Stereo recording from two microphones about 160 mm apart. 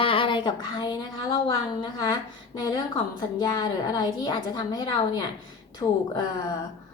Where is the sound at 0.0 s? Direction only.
30° left (ahead or behind).